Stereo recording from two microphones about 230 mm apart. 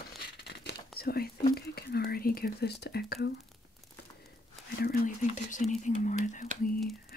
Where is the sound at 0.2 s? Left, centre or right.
Left.